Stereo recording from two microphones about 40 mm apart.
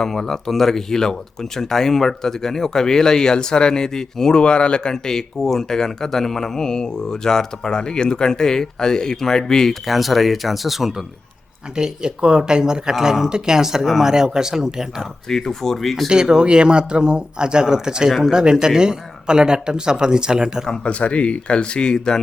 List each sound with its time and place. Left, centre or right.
0.0 s speech: centre
9.8 s speech: centre
11.8 s speech: right
13.8 s speech: centre
14.1 s speech: centre
15.3 s speech: centre
16.0 s speech: centre
20.8 s speech: left